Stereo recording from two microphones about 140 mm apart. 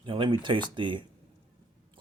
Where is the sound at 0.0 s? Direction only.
35° right (ahead or behind).